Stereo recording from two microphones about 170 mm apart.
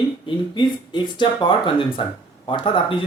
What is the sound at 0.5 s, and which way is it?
Speech, 25° left (ahead or behind).